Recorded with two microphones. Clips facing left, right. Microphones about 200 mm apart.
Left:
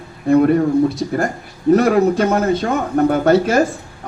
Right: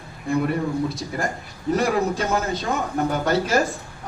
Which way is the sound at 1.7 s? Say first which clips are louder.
Left 8 dB; 60° left (ahead or behind).